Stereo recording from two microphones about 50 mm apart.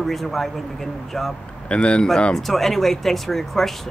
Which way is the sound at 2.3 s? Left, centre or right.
Centre.